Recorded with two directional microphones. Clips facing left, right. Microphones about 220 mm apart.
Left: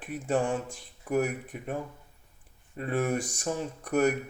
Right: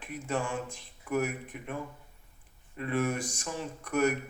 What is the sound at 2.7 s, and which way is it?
Speech, 40° left (ahead or behind).